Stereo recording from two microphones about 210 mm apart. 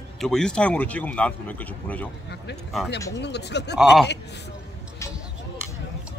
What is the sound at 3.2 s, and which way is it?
Speech, 55° left (ahead or behind).